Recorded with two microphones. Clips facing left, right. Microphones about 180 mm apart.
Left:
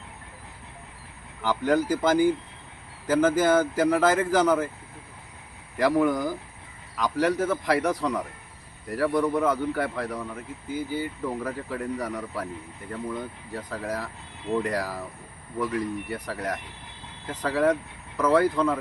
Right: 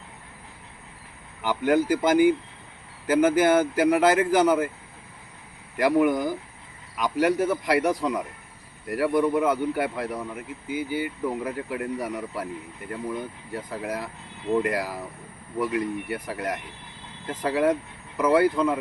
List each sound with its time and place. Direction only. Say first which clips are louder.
1.4 s speech: right 1 dB; 10° right (ahead or behind)
5.8 s speech: right 1 dB; 15° right (ahead or behind)